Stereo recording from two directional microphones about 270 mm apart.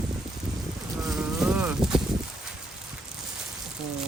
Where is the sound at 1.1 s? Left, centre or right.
Centre.